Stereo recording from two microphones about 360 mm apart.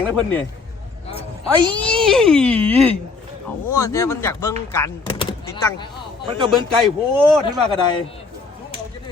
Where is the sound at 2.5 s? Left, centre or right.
Centre.